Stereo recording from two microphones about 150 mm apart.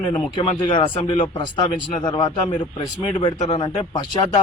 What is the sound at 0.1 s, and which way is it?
Speech, 30° left (ahead or behind).